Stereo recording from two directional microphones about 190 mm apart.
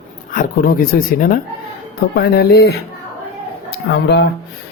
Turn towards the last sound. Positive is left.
turn(degrees=60)  # may be behind; listen again after turning